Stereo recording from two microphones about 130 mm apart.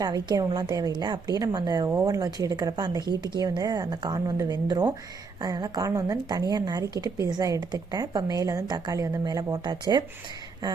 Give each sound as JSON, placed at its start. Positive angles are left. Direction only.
{"t": 0.0, "sound": "a woman's voice", "side_deg": -30}